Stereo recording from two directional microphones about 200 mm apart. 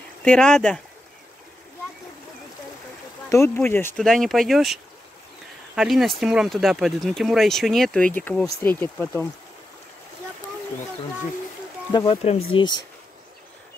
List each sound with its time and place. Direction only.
0.2 s speech: 5° left (ahead or behind)
3.3 s speech: 10° left (ahead or behind)
5.8 s speech: centre (ahead or behind)
11.9 s speech: 25° left (ahead or behind)